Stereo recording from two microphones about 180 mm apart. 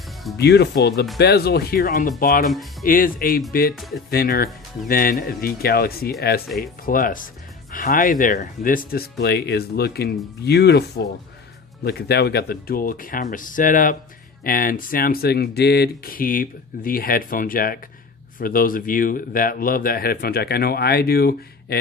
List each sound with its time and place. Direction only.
0.3 s speech: 65° left (ahead or behind)
2.0 s speech: 50° left (ahead or behind)